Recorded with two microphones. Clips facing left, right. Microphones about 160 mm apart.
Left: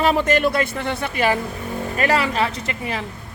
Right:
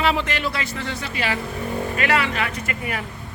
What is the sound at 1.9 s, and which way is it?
Speech, 40° left (ahead or behind).